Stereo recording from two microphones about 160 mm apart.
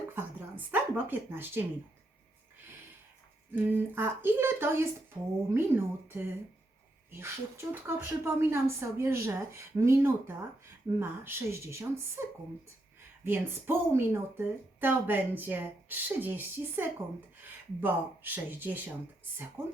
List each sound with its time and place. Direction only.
0.1 s a sound: 10° right (ahead or behind)
3.5 s speech: 10° right (ahead or behind)
13.2 s speech: 15° right (ahead or behind)